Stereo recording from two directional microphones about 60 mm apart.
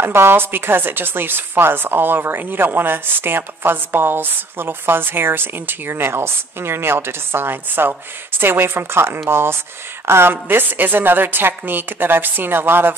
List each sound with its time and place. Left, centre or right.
0.0 s speech: right